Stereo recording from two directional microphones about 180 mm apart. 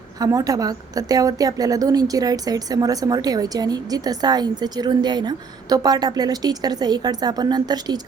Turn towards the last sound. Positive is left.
turn(degrees=-20)  # may be behind; listen again after turning